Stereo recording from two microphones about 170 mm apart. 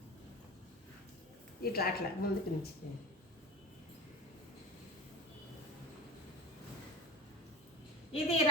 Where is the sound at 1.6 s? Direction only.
65° left (ahead or behind).